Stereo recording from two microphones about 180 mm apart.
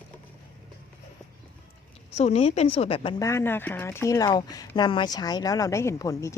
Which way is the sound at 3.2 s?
15° left (ahead or behind).